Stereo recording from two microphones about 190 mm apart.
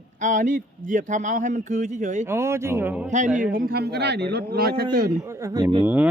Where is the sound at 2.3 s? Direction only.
15° right (ahead or behind).